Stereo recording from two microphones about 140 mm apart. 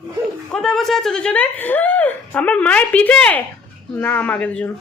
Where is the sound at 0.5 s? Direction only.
5° left (ahead or behind).